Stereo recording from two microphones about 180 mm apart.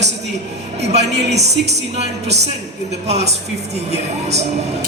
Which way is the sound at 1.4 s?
35° right (ahead or behind).